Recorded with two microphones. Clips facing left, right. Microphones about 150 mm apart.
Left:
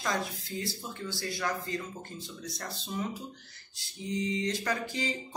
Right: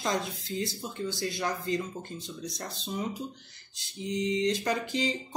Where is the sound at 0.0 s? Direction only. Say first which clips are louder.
Right 2 dB; 25° right (ahead or behind).